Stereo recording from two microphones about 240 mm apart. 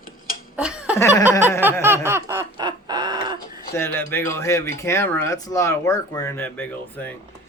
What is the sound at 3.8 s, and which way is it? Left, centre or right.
Speech, centre.